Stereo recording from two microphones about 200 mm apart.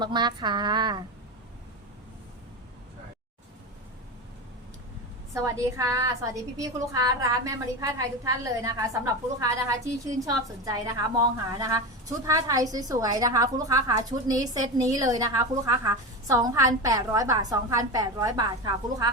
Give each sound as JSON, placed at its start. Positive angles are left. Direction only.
{"t": 0.0, "sound": "a woman's voice", "side_deg": -20}
{"t": 5.3, "sound": "a woman's voice", "side_deg": -15}